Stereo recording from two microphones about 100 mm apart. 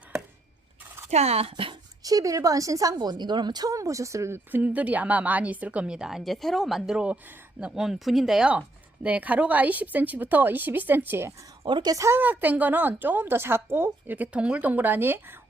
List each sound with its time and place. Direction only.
1.1 s speech: 90° right; by 1.7 s 70° right (ahead or behind)
2.0 s a woman's voice: 35° right (ahead or behind); by 11.3 s 20° right (ahead or behind)
11.6 s speech: 50° right (ahead or behind); by 12.2 s 30° right (ahead or behind)
12.2 s speech: 15° right (ahead or behind)